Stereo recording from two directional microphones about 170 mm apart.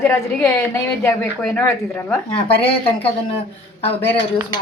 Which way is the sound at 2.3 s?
30° left (ahead or behind).